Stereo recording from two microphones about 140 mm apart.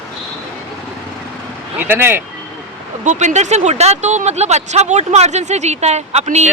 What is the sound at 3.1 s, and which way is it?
Speech, 60° right (ahead or behind).